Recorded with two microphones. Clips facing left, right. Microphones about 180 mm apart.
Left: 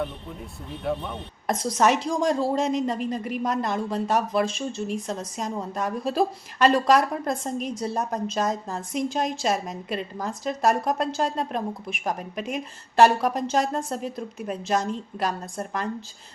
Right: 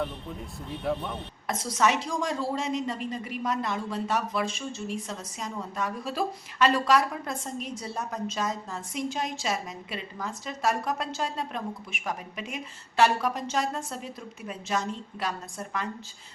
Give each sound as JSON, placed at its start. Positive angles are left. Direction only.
{"t": 0.9, "sound": "speech", "side_deg": 0}
{"t": 1.8, "sound": "a woman's voice", "side_deg": 45}